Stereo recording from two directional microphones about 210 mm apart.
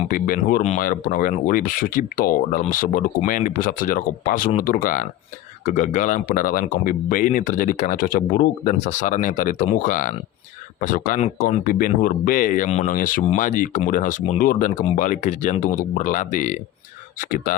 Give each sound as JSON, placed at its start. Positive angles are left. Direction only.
{"t": 0.1, "sound": "speech", "side_deg": 40}